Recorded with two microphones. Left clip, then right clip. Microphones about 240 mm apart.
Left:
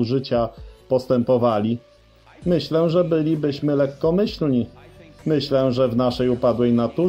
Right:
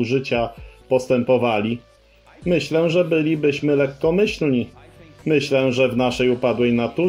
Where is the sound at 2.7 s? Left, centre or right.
Left.